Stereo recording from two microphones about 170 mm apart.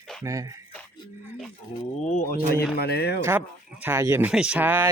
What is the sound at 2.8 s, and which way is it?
Speech, 70° left (ahead or behind).